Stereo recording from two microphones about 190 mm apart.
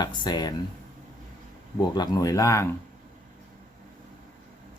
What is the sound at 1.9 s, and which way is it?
Speech, 20° left (ahead or behind).